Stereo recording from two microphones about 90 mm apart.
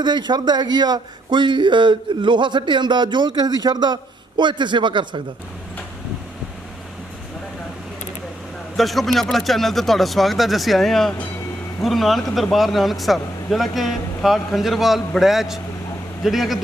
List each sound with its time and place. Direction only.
0.0 s speech: 55° right (ahead or behind)
8.7 s a man's voice: centre (ahead or behind)